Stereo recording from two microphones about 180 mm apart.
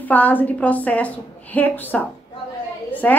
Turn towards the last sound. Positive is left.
turn(degrees=10)  # may be behind; listen again after turning